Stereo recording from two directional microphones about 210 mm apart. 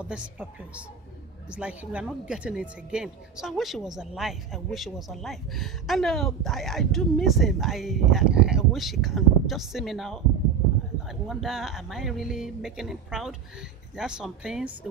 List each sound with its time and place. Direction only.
0.0 s speech: 5° right (ahead or behind)